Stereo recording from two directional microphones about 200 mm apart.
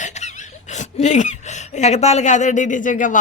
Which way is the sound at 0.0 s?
35° left (ahead or behind).